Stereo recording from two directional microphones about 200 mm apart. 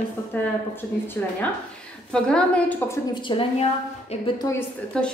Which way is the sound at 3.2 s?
25° left (ahead or behind).